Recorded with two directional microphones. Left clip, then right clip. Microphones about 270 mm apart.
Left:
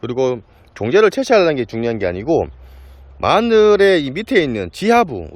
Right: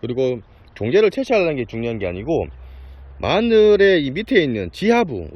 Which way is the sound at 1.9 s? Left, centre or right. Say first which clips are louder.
Left 5 dB; left.